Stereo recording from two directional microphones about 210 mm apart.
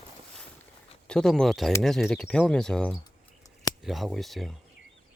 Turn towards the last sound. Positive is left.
turn(degrees=0)  # may be behind; listen again after turning